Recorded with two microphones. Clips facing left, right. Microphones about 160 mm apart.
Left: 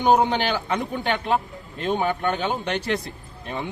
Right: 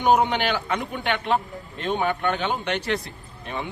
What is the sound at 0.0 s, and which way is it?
A man's voice, 30° left (ahead or behind).